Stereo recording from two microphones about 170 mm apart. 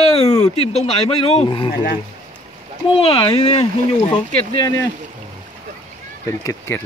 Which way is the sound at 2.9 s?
35° left (ahead or behind).